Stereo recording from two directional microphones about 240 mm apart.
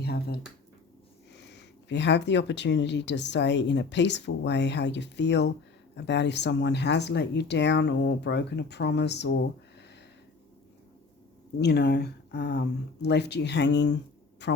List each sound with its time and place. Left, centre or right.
0.0 s a sound: left
1.3 s speech: left
11.6 s speech: left